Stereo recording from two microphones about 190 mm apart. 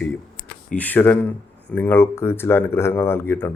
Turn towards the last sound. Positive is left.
turn(degrees=10)  # may be behind; listen again after turning